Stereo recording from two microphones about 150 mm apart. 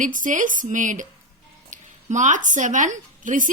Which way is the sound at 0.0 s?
60° right (ahead or behind).